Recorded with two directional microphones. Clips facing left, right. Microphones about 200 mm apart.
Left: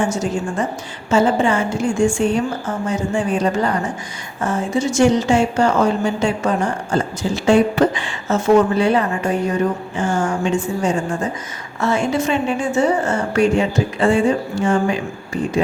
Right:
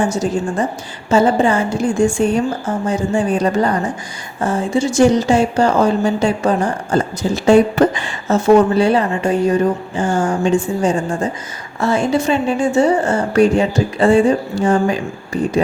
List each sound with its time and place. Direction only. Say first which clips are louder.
0.1 s a woman's voice: right 3 dB; 35° right (ahead or behind)